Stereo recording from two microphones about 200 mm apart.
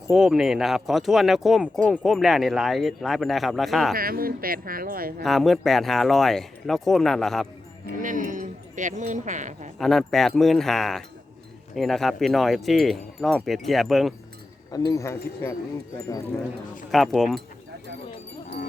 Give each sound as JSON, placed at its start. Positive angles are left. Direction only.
{"t": 0.1, "sound": "speech", "side_deg": -5}
{"t": 3.9, "sound": "speech", "side_deg": -45}
{"t": 5.2, "sound": "speech", "side_deg": 0}
{"t": 8.0, "sound": "speech", "side_deg": -40}
{"t": 9.7, "sound": "speech", "side_deg": 0}
{"t": 14.7, "sound": "speech", "side_deg": 15}
{"t": 16.9, "sound": "speech", "side_deg": 0}